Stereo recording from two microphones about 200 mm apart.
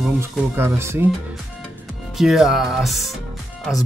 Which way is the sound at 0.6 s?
10° right (ahead or behind).